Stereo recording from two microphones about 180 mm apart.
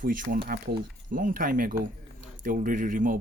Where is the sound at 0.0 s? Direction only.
50° right (ahead or behind).